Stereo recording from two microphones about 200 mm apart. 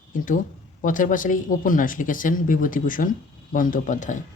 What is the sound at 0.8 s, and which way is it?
Speech, 40° left (ahead or behind).